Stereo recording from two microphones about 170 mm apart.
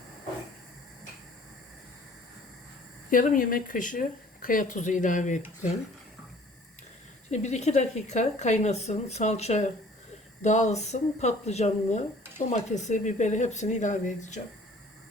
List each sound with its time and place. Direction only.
3.1 s speech: 55° left (ahead or behind)
7.3 s speech: 40° left (ahead or behind)